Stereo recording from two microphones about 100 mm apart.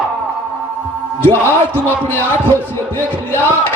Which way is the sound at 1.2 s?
20° left (ahead or behind).